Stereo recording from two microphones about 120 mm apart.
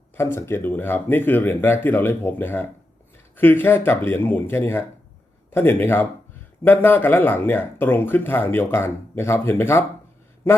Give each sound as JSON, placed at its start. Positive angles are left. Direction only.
{"t": 0.2, "sound": "speech", "side_deg": 20}